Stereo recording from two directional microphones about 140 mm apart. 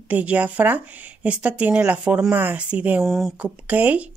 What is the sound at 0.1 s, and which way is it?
Speech, 10° right (ahead or behind).